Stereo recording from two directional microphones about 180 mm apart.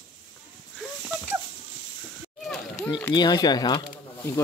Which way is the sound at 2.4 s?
Centre (ahead or behind).